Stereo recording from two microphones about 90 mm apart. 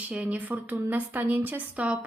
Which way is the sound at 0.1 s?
15° right (ahead or behind).